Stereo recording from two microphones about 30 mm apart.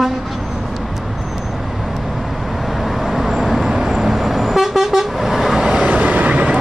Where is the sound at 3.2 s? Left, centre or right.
Centre.